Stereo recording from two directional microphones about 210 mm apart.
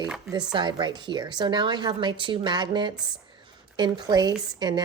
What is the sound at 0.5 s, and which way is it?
A woman's voice, 20° right (ahead or behind).